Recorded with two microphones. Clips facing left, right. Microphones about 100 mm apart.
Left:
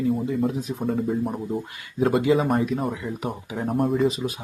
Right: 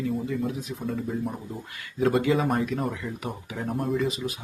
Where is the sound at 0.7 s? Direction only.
35° left (ahead or behind).